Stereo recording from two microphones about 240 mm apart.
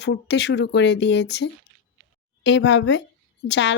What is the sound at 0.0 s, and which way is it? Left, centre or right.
Speech, left.